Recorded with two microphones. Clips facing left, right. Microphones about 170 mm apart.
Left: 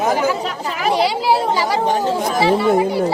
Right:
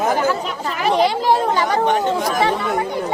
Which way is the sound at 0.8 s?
10° left (ahead or behind).